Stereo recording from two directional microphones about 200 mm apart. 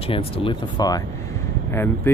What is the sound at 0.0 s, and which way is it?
Speech, 30° left (ahead or behind).